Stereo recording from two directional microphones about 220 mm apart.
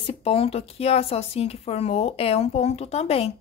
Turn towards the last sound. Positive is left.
turn(degrees=25)  # may be behind; listen again after turning